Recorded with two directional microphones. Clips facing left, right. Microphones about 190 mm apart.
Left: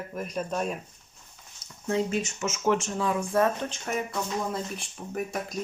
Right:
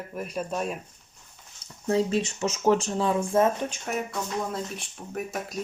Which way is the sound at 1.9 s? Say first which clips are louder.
Right 3 dB; 30° right (ahead or behind).